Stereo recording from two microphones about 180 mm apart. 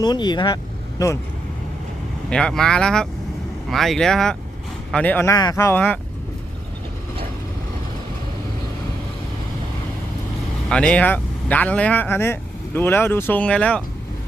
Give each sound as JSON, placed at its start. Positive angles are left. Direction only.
{"t": 0.0, "sound": "speech", "side_deg": 25}
{"t": 2.3, "sound": "speech", "side_deg": 5}
{"t": 10.7, "sound": "speech", "side_deg": 5}